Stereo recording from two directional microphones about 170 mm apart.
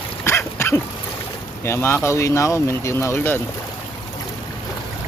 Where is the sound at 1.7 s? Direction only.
15° left (ahead or behind).